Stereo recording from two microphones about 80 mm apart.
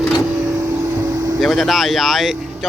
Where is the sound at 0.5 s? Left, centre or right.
Right.